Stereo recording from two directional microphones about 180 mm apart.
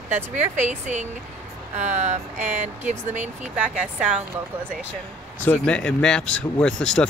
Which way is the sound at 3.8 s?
5° right (ahead or behind).